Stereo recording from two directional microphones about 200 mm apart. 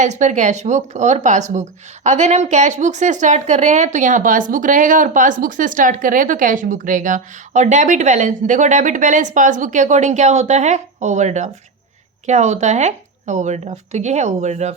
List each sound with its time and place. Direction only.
0.0 s a woman's voice: 35° right (ahead or behind)